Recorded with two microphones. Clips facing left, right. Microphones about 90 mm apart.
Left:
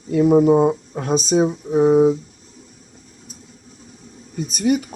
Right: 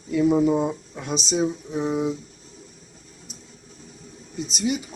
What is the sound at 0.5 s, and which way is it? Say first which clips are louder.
Speech: left 8 dB; 35° left (ahead or behind).